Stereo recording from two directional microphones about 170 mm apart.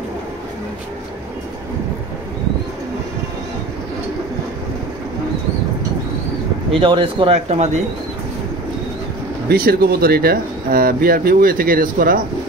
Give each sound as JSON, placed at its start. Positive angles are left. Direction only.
{"t": 6.8, "sound": "speech", "side_deg": -30}
{"t": 7.4, "sound": "speech", "side_deg": -40}
{"t": 9.5, "sound": "speech", "side_deg": -60}